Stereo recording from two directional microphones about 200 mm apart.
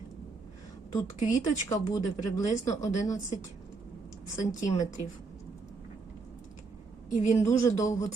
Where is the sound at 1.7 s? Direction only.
15° left (ahead or behind).